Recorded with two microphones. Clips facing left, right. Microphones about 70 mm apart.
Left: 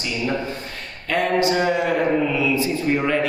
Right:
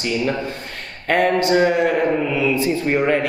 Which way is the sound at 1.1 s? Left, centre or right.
Right.